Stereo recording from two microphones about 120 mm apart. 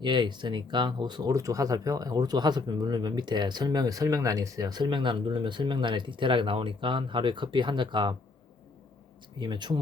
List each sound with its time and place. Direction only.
0.0 s speech: 40° right (ahead or behind)
9.4 s speech: 40° right (ahead or behind)